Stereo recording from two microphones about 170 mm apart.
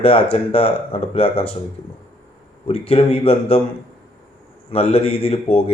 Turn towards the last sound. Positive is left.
turn(degrees=35)  # may be behind; listen again after turning